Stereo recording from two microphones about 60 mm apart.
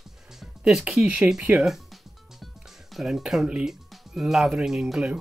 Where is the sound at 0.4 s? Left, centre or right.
Centre.